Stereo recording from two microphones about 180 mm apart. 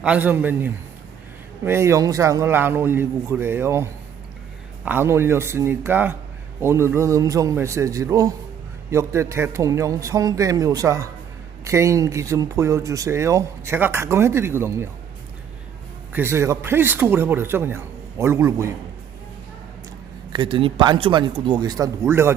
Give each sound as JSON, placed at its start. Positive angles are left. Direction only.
{"t": 0.0, "sound": "speech", "side_deg": -10}
{"t": 16.1, "sound": "speech", "side_deg": -15}
{"t": 20.3, "sound": "speech", "side_deg": -25}